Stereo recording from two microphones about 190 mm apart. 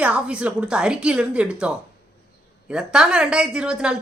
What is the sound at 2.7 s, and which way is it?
Speech, 5° right (ahead or behind).